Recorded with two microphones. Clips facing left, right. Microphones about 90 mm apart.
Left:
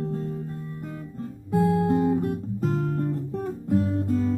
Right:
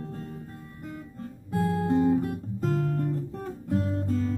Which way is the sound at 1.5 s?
15° left (ahead or behind).